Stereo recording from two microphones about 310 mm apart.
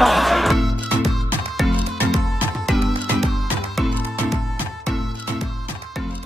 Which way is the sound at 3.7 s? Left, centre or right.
Centre.